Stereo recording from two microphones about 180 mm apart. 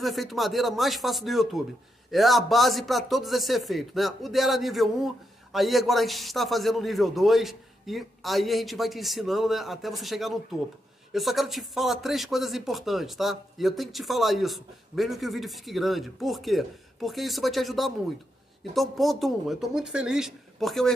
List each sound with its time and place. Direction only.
0.0 s a man's voice: centre (ahead or behind)